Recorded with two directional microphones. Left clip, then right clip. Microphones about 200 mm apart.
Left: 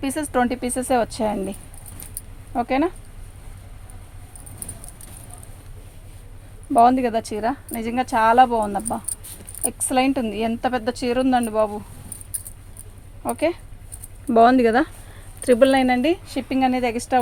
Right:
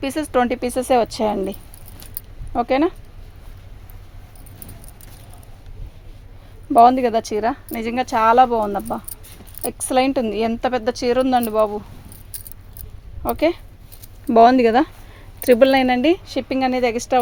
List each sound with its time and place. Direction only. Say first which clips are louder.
0.0 s speech: right 3 dB; 50° right (ahead or behind)
6.7 s speech: right 3 dB; 45° right (ahead or behind)
13.2 s speech: right 3 dB; 50° right (ahead or behind)
14.3 s speech: right 3 dB; 30° right (ahead or behind)
15.4 s speech: right 2 dB; 35° right (ahead or behind)